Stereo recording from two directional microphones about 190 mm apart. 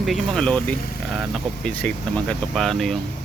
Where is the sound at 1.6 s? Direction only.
5° left (ahead or behind).